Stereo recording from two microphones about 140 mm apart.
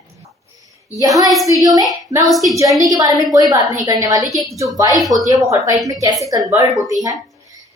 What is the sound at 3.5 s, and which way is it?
Speech, 25° right (ahead or behind).